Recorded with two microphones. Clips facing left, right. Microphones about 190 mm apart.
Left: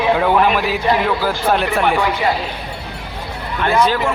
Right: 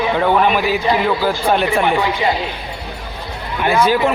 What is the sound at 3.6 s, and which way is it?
Speech, 10° right (ahead or behind).